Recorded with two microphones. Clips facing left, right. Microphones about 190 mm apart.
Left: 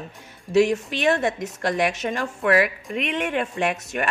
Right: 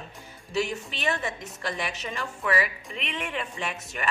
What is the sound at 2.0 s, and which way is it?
Speech, 60° left (ahead or behind).